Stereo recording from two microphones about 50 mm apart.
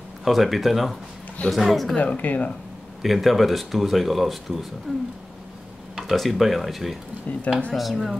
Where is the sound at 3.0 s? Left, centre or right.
Centre.